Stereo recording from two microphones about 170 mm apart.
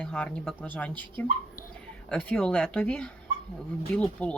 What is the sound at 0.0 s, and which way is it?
Speech, 10° left (ahead or behind).